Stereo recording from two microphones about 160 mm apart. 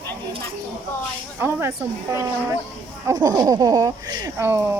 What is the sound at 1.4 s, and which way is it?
A woman's voice, 15° right (ahead or behind).